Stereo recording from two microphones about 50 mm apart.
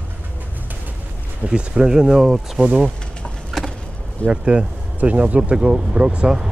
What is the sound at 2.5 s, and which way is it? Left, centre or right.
Speech, right.